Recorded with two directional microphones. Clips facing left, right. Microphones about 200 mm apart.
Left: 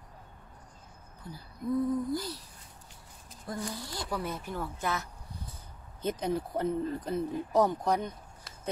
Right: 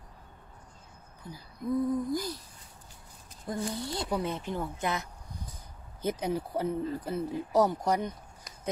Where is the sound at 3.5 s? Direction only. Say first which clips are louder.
Right 4 dB; 25° right (ahead or behind).